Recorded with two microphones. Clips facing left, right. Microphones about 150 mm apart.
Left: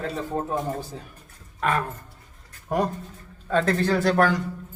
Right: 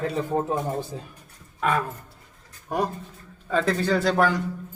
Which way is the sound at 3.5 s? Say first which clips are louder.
Left 1 dB; centre (ahead or behind).